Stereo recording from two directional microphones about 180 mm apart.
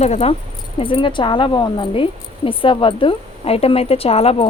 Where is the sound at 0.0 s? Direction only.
35° left (ahead or behind).